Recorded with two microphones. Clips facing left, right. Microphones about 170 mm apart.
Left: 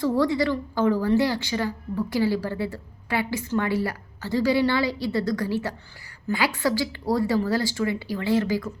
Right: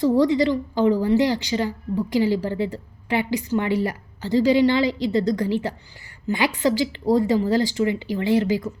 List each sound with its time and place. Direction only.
0.0 s a woman's voice: 20° right (ahead or behind)